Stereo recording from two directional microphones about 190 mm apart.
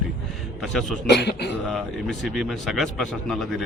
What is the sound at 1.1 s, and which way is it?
Speech, 60° left (ahead or behind).